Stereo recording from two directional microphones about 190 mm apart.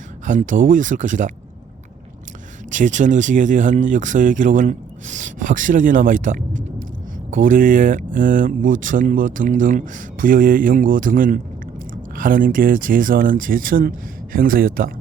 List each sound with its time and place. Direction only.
0.3 s speech: 45° right (ahead or behind)
2.6 s speech: 40° right (ahead or behind)